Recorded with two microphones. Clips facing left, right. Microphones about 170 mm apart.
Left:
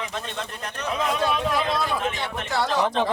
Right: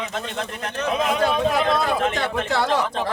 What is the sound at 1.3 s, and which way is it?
Speech, 50° right (ahead or behind).